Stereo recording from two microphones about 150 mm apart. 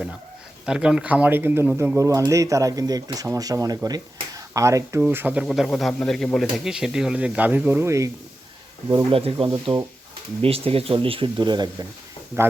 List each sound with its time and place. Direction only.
0.6 s speech: 5° right (ahead or behind)
5.5 s speech: 5° left (ahead or behind); by 8.1 s 20° right (ahead or behind)
8.9 s speech: 30° right (ahead or behind)